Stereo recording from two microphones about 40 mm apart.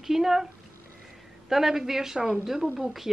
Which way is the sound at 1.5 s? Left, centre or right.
Centre.